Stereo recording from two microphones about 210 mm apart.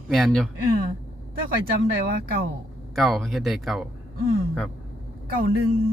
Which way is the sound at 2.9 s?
Centre (ahead or behind).